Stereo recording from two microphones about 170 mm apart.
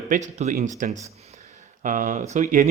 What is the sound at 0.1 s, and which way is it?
A man's voice, 45° right (ahead or behind).